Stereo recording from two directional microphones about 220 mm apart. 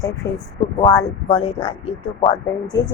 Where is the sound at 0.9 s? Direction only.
25° left (ahead or behind).